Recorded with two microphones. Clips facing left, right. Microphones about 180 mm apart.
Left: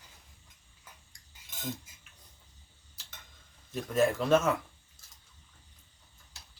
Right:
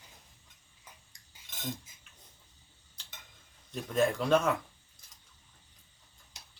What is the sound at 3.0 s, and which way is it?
Tick-tock, 5° left (ahead or behind).